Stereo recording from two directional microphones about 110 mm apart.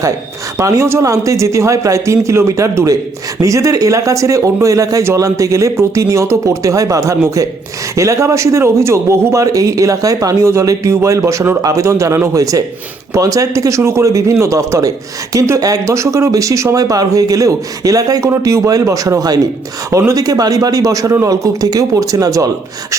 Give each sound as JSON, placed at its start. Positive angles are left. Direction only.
{"t": 0.6, "sound": "speech", "side_deg": -25}